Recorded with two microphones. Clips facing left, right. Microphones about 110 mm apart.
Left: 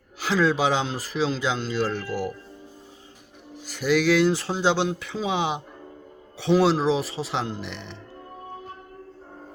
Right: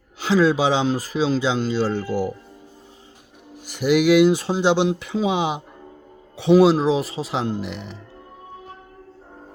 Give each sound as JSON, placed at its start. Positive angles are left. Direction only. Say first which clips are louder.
{"t": 0.3, "sound": "speech", "louder": "right 4 dB", "side_deg": -10}
{"t": 3.7, "sound": "speech", "louder": "right 4 dB", "side_deg": -15}